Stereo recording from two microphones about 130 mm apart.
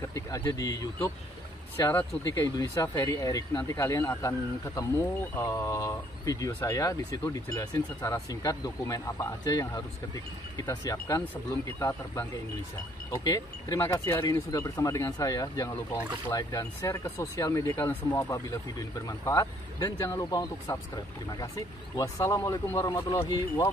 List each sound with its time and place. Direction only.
0.0 s speech: 25° left (ahead or behind)